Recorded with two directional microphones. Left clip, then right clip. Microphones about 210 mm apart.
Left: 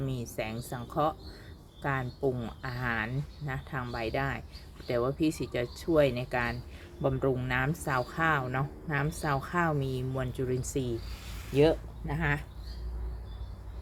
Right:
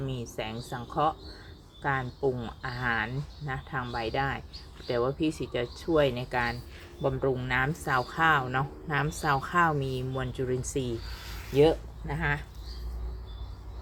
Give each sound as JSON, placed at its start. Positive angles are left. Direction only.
{"t": 0.0, "sound": "speech", "side_deg": 5}
{"t": 12.0, "sound": "speech", "side_deg": 15}